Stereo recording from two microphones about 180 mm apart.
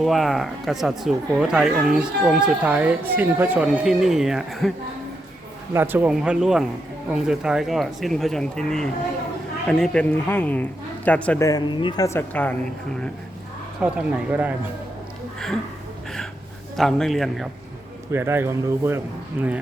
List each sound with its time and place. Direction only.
0.0 s speech: centre (ahead or behind)
5.7 s a woman's voice: 10° right (ahead or behind); by 11.4 s 10° left (ahead or behind)
11.4 s speech: 25° left (ahead or behind); by 12.5 s 10° left (ahead or behind)
13.8 s speech: 5° right (ahead or behind)
16.7 s speech: centre (ahead or behind)
18.1 s speech: 15° right (ahead or behind)